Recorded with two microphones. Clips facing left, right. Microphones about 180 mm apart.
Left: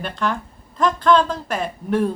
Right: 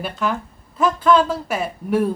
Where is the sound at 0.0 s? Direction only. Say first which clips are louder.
Right 1 dB; 5° right (ahead or behind).